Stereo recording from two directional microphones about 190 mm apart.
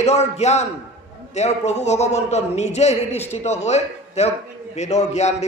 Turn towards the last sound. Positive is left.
turn(degrees=35)  # may be behind; listen again after turning